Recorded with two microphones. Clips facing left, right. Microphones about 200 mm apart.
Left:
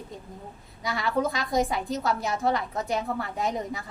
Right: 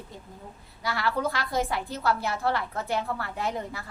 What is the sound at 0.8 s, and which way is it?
A woman's voice, 20° left (ahead or behind).